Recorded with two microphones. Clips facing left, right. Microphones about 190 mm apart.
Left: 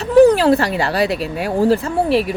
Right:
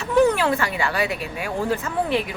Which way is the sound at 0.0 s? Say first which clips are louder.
Left 8 dB; 35° left (ahead or behind).